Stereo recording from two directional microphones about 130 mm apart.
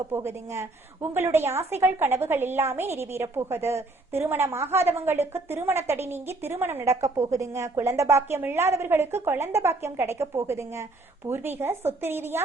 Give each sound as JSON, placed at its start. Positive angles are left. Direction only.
{"t": 0.1, "sound": "a woman's voice", "side_deg": -20}